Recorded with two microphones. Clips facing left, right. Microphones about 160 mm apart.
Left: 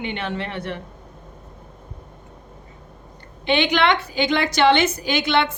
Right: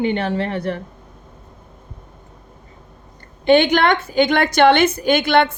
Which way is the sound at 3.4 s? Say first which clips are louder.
Right 5 dB; 45° right (ahead or behind).